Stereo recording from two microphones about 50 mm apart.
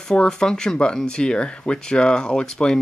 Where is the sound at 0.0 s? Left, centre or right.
Centre.